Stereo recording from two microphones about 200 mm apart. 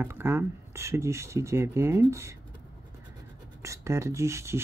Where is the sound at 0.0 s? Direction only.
10° right (ahead or behind).